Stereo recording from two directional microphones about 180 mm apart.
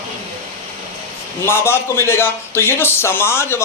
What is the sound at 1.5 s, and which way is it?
A man's voice, 15° left (ahead or behind).